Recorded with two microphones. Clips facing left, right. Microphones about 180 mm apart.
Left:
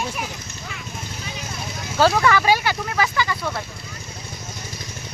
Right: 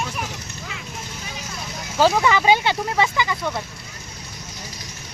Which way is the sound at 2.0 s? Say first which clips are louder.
Even; 15° right (ahead or behind).